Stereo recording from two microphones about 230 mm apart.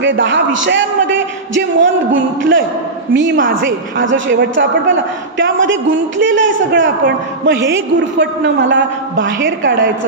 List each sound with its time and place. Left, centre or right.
0.0 s a man's voice: right